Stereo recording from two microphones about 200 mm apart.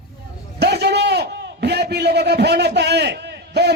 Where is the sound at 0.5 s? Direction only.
55° right (ahead or behind).